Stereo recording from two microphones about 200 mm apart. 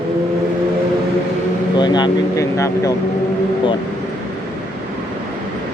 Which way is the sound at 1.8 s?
20° left (ahead or behind).